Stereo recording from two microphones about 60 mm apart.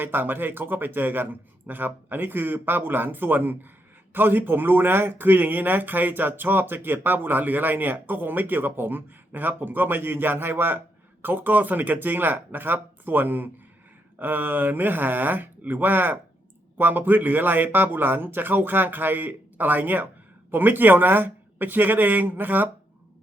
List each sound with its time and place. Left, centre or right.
0.0 s speech: right